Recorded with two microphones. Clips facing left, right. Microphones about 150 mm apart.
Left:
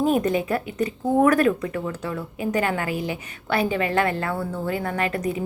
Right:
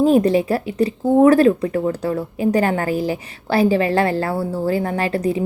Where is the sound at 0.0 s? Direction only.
30° right (ahead or behind).